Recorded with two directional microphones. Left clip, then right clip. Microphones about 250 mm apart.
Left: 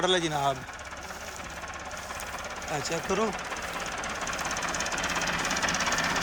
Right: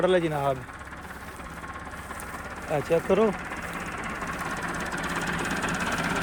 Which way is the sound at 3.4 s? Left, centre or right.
Left.